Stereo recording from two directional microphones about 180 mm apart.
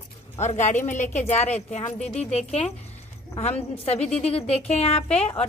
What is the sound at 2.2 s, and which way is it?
A woman's voice, 35° left (ahead or behind).